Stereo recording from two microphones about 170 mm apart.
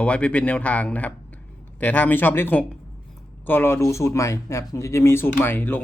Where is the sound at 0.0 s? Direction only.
5° left (ahead or behind).